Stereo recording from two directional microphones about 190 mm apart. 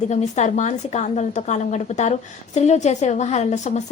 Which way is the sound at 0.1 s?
35° left (ahead or behind).